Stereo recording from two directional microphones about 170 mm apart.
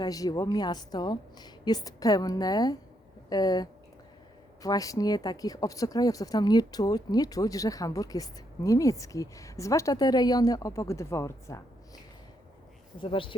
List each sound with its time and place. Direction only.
0.0 s speech: 20° left (ahead or behind)
13.0 s speech: 30° left (ahead or behind)